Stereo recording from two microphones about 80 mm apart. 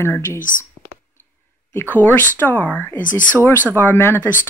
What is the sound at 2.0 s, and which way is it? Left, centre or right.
Speech, left.